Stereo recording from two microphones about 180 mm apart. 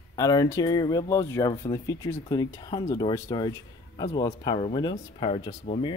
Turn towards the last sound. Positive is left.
turn(degrees=30)  # may be behind; listen again after turning